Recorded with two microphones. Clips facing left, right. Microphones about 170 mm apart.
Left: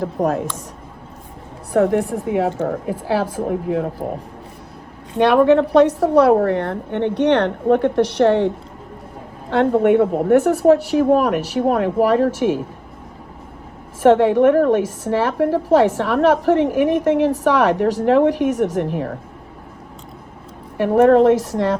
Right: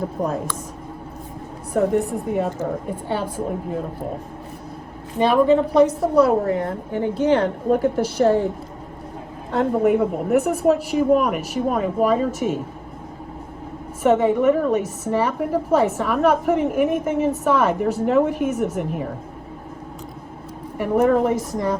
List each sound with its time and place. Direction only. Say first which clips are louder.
0.0 s a woman's voice: left 4 dB; 70° left (ahead or behind)
1.7 s a woman's voice: left 3 dB; 75° left (ahead or behind)
5.1 s a woman's voice: left 3 dB; 70° left (ahead or behind)
9.5 s a woman's voice: left 4 dB; 80° left
14.0 s a woman's voice: left 4 dB; 80° left
20.7 s a woman's voice: left 5 dB; 75° left (ahead or behind)